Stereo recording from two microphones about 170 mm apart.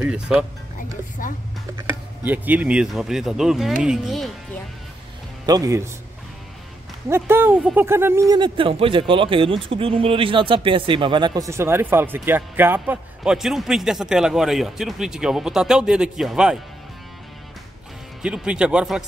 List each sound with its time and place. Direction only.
0.0 s speech: 5° right (ahead or behind)
2.2 s speech: 10° right (ahead or behind)
5.5 s speech: 20° right (ahead or behind)
7.1 s speech: 15° right (ahead or behind)
18.2 s speech: 5° right (ahead or behind)